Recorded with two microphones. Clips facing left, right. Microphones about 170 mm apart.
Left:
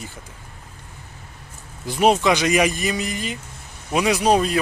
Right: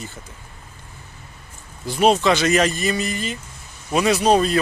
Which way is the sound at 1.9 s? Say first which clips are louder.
Right 1 dB; 15° left (ahead or behind).